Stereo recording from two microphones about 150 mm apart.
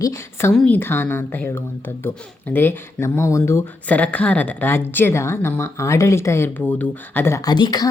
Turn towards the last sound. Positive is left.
turn(degrees=25)  # may be behind; listen again after turning